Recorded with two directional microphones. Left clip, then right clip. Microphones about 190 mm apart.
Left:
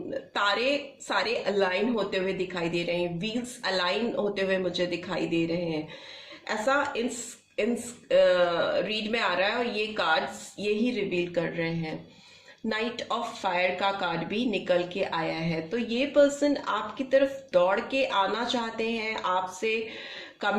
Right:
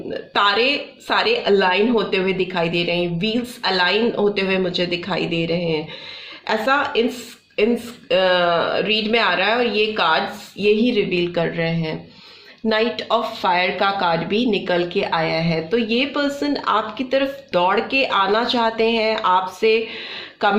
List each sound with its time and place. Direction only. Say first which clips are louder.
0.1 s speech: right 9 dB; 30° right (ahead or behind)
8.1 s speech: right 5 dB; 30° right (ahead or behind)